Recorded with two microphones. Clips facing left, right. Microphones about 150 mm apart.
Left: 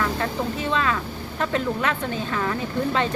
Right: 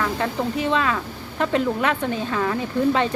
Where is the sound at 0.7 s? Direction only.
20° right (ahead or behind).